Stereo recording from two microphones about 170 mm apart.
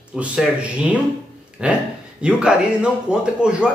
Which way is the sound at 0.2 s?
10° right (ahead or behind).